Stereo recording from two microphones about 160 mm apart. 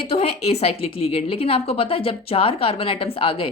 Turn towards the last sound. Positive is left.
turn(degrees=35)  # may be behind; listen again after turning